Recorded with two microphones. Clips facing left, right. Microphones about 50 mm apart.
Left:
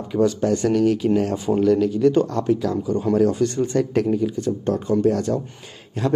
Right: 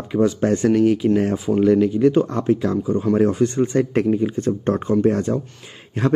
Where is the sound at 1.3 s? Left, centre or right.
Centre.